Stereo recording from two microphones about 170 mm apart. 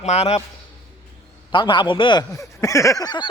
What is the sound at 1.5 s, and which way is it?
Speech, 25° left (ahead or behind).